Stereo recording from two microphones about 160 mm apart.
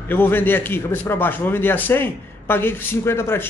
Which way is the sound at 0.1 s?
15° left (ahead or behind).